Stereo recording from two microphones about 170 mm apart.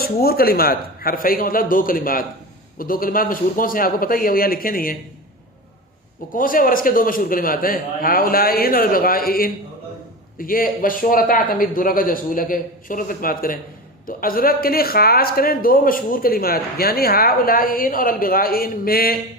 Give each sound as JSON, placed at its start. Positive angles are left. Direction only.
{"t": 0.0, "sound": "speech", "side_deg": 65}
{"t": 6.3, "sound": "speech", "side_deg": 55}